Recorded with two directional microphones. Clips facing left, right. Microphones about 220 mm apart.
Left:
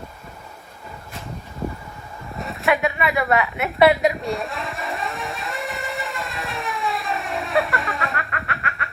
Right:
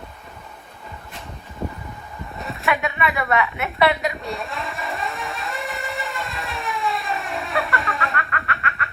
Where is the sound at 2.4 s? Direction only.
Centre (ahead or behind).